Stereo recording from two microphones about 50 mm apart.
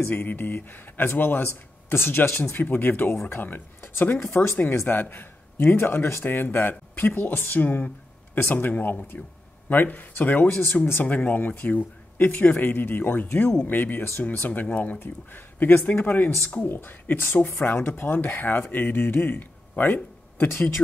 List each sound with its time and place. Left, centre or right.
0.1 s a man's voice: left
4.2 s speech: left
5.1 s a man's voice: left
10.8 s a man's voice: left
17.8 s a man's voice: left